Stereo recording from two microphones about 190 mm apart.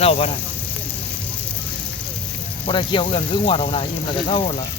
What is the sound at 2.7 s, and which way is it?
Speech, 25° left (ahead or behind).